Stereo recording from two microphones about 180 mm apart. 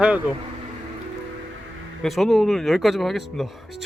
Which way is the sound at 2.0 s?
Centre (ahead or behind).